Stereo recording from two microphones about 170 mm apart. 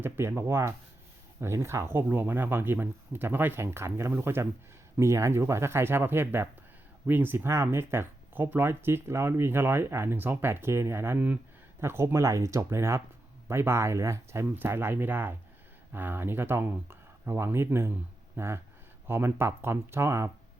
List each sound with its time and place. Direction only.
0.0 s speech: 15° right (ahead or behind)